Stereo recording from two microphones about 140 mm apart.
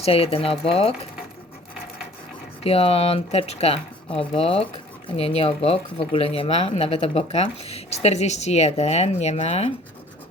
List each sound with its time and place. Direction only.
0.0 s speech: 45° left (ahead or behind)
2.6 s speech: 45° left (ahead or behind)